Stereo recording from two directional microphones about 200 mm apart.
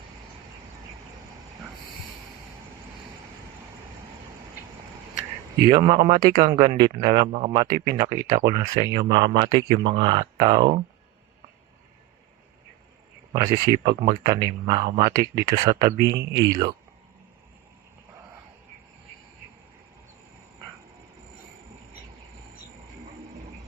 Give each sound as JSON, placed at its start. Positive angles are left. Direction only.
{"t": 5.7, "sound": "speech", "side_deg": -25}
{"t": 13.3, "sound": "speech", "side_deg": -20}